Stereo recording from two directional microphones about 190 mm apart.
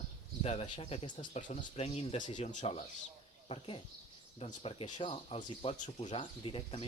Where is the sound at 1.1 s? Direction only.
40° left (ahead or behind).